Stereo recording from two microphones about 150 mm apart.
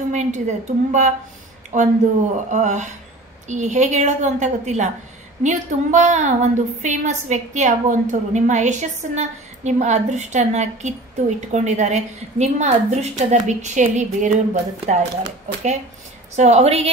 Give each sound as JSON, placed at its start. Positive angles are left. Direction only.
{"t": 0.1, "sound": "a woman's voice", "side_deg": -55}
{"t": 16.3, "sound": "a woman's voice", "side_deg": -45}